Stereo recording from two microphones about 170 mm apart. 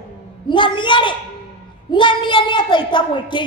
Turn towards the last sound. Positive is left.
turn(degrees=30)  # may be behind; listen again after turning